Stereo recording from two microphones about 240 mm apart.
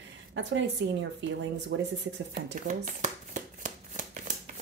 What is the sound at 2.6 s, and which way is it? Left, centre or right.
Shuffling cards, right.